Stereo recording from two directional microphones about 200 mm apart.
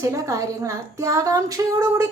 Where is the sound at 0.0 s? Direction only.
15° right (ahead or behind).